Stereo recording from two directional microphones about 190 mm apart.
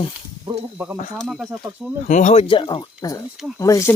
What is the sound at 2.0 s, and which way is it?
Speech, 40° left (ahead or behind).